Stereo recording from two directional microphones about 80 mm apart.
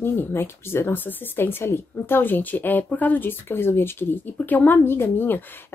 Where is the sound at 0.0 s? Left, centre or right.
Left.